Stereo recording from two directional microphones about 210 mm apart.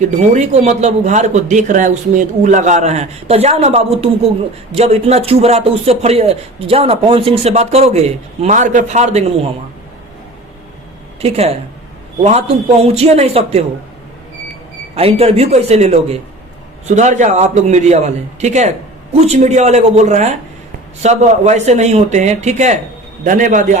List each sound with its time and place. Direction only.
0.3 s a man's voice: 35° right (ahead or behind)
11.2 s a man's voice: 30° right (ahead or behind)
12.8 s a man's voice: 30° right (ahead or behind)
14.9 s a man's voice: 30° right (ahead or behind)